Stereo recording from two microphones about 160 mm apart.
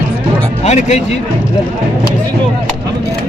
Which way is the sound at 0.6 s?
45° left (ahead or behind).